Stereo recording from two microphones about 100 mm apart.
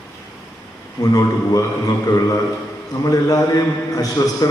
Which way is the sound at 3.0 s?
35° left (ahead or behind).